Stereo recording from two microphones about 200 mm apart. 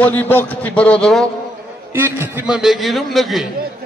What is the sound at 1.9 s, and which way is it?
A man's voice, 10° right (ahead or behind).